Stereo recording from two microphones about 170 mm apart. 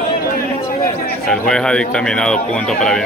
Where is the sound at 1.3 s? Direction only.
5° left (ahead or behind).